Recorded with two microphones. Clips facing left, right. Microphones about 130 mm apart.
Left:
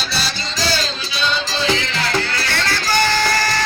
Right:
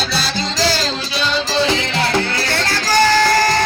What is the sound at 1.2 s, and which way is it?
Music, 80° right.